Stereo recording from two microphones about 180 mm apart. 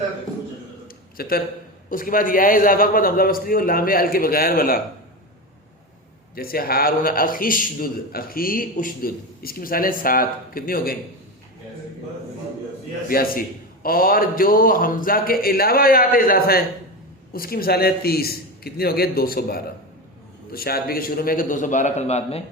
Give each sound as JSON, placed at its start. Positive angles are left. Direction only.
{"t": 0.9, "sound": "a sound", "side_deg": 55}
{"t": 1.9, "sound": "a man's voice", "side_deg": 50}
{"t": 6.3, "sound": "a man's voice", "side_deg": 55}
{"t": 13.1, "sound": "a man's voice", "side_deg": 55}